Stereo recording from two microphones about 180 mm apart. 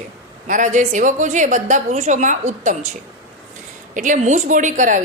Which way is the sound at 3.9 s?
45° right (ahead or behind).